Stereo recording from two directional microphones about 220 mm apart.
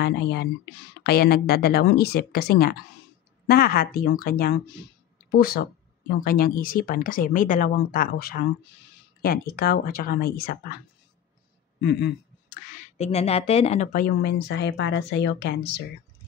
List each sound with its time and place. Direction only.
0.0 s speech: 50° left (ahead or behind)
11.8 s a sound: 50° left (ahead or behind)
12.8 s speech: 30° left (ahead or behind); by 15.8 s 45° left (ahead or behind)